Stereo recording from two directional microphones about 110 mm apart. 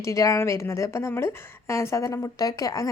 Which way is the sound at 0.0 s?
30° left (ahead or behind).